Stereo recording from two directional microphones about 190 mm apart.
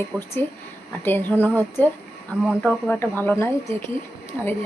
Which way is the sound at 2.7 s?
10° left (ahead or behind).